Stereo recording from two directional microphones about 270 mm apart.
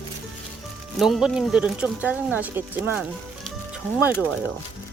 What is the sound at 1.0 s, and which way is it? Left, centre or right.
Speech, centre.